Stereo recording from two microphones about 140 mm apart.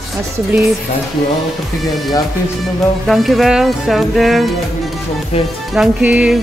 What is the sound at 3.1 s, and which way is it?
Music, centre (ahead or behind).